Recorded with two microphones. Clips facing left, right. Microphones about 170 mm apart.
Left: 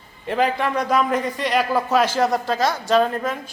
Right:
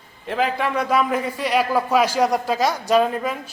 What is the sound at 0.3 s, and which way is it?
A man's voice, centre (ahead or behind).